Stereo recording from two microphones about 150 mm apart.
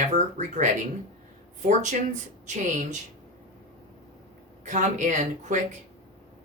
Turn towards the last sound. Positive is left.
turn(degrees=-55)  # may be behind; listen again after turning